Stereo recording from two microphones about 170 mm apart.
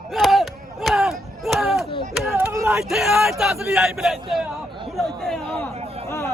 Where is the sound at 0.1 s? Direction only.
Centre (ahead or behind).